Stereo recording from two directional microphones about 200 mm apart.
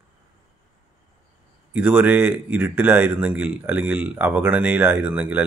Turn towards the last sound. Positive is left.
turn(degrees=-5)  # may be behind; listen again after turning